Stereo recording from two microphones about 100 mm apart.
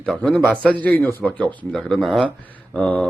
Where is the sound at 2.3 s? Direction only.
15° left (ahead or behind).